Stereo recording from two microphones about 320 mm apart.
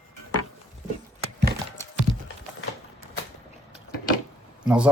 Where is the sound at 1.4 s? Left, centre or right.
Right.